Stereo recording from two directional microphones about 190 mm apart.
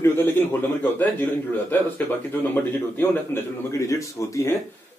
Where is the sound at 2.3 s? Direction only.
10° left (ahead or behind).